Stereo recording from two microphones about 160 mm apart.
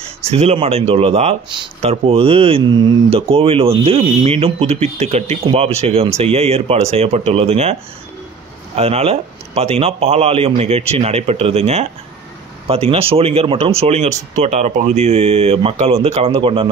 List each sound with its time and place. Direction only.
0.3 s speech: 40° right (ahead or behind)
8.7 s speech: 40° right (ahead or behind)